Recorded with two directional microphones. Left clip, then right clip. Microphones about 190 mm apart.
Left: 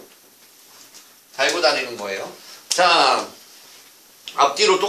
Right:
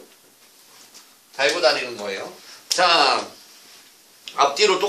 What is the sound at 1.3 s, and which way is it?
Speech, 15° left (ahead or behind).